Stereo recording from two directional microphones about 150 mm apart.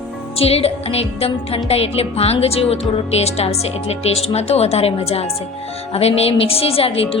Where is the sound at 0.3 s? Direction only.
40° left (ahead or behind).